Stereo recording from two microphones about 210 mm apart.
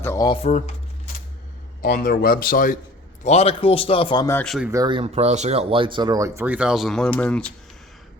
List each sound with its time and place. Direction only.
0.0 s speech: 15° left (ahead or behind)
1.8 s speech: 45° left (ahead or behind)
3.2 s speech: 30° left (ahead or behind)
4.4 s speech: centre (ahead or behind)
4.7 s speech: 20° right (ahead or behind); by 7.4 s 5° left (ahead or behind)